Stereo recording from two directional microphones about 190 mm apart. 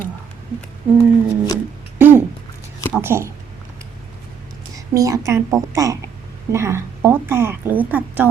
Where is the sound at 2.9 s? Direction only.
10° right (ahead or behind).